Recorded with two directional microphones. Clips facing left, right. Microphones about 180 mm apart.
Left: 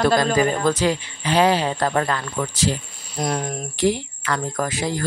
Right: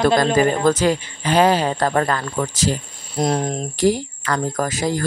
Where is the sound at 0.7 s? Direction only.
45° right (ahead or behind).